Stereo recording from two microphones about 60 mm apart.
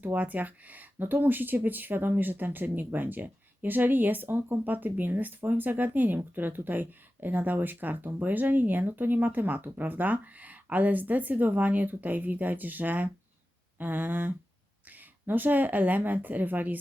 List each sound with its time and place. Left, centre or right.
0.0 s speech: right